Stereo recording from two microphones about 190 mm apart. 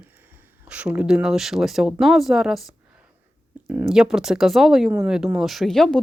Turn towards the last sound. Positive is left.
turn(degrees=0)  # may be behind; listen again after turning